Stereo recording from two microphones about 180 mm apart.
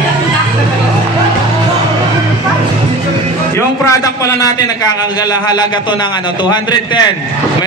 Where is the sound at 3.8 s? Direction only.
15° left (ahead or behind).